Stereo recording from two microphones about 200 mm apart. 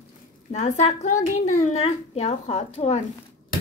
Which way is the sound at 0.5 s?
35° left (ahead or behind).